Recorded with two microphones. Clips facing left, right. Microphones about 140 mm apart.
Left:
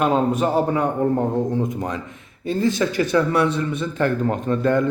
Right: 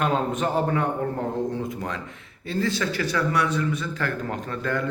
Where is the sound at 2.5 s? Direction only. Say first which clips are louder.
Left 5 dB; 20° left (ahead or behind).